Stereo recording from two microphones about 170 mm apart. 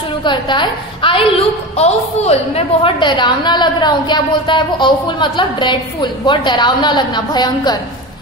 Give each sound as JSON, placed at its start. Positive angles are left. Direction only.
{"t": 0.2, "sound": "a woman's voice", "side_deg": 25}